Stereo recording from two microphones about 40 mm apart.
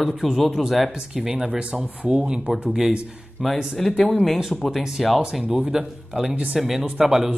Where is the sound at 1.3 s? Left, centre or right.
Right.